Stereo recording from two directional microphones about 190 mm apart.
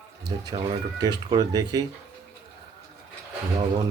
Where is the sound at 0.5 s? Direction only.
25° right (ahead or behind).